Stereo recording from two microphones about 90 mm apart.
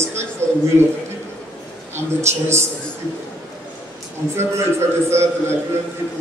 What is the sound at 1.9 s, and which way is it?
Speech, 30° right (ahead or behind).